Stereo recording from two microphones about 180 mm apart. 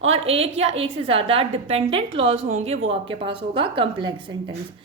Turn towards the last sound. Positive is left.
turn(degrees=-30)  # may be behind; listen again after turning